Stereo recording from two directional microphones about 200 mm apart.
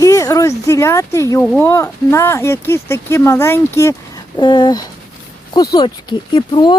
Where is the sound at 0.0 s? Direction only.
15° left (ahead or behind).